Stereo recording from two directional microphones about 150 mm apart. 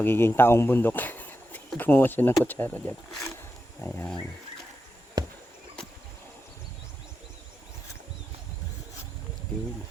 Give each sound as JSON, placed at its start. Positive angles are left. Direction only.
{"t": 0.0, "sound": "speech", "side_deg": 15}
{"t": 5.2, "sound": "chop", "side_deg": -25}